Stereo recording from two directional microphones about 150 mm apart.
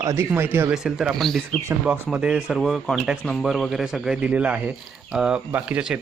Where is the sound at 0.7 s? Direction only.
5° right (ahead or behind).